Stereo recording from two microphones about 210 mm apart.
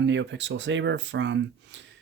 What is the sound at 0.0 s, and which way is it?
Speech, 60° right (ahead or behind).